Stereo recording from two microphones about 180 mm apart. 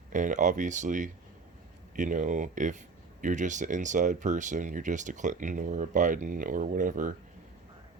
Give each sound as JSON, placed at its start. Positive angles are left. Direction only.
{"t": 0.1, "sound": "speech", "side_deg": -45}